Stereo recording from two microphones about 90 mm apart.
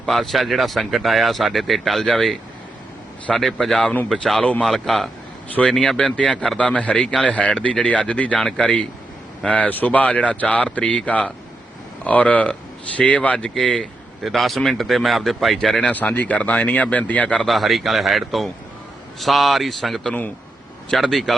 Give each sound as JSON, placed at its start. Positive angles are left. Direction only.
{"t": 0.0, "sound": "speech", "side_deg": 0}
{"t": 15.8, "sound": "speech", "side_deg": 15}
{"t": 17.4, "sound": "speech", "side_deg": 0}